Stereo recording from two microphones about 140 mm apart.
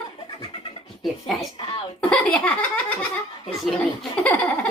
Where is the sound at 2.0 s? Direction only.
10° left (ahead or behind).